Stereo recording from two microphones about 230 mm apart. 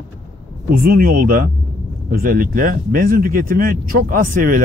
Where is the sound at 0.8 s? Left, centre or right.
Right.